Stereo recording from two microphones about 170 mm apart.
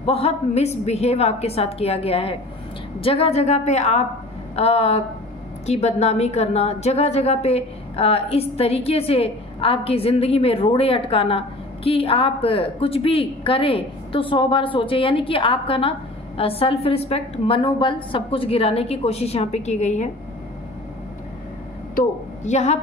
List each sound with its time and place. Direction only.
0.0 s a woman's voice: 35° left (ahead or behind)
21.9 s a woman's voice: 45° left (ahead or behind)